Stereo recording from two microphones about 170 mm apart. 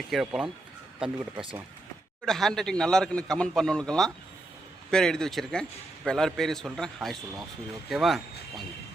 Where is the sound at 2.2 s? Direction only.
5° left (ahead or behind).